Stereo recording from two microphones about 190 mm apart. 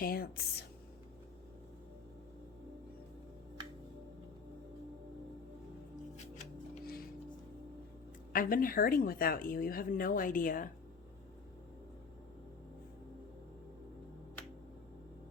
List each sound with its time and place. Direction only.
0.0 s speech: 50° left (ahead or behind)
6.4 s music: 50° left (ahead or behind)
8.3 s speech: 45° left (ahead or behind)